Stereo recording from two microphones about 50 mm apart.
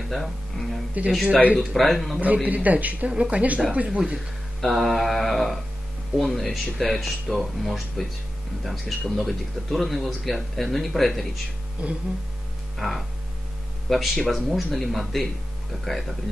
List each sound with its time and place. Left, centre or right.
0.1 s speech: centre
2.1 s speech: right
4.6 s speech: centre
11.8 s speech: right
12.7 s hum: centre
13.8 s speech: centre